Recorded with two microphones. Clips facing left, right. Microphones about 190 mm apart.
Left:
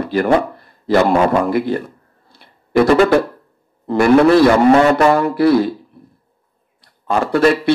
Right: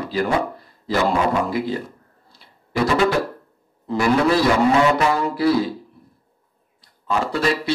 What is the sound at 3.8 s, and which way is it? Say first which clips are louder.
A man's voice: left 7 dB; 60° left (ahead or behind).